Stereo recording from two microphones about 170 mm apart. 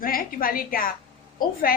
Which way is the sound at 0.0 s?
60° left (ahead or behind).